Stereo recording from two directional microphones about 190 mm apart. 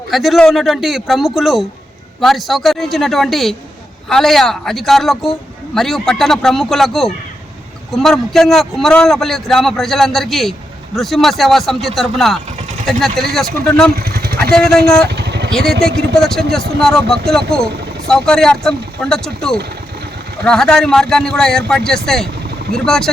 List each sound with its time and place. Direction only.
0.1 s a man's voice: centre (ahead or behind)
13.9 s vehicle: 55° right (ahead or behind)
16.1 s a man's voice: centre (ahead or behind)